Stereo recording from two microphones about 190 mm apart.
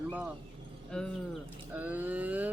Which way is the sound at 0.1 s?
10° right (ahead or behind).